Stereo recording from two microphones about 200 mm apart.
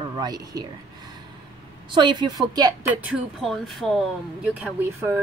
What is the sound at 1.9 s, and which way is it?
A woman's voice, 25° right (ahead or behind).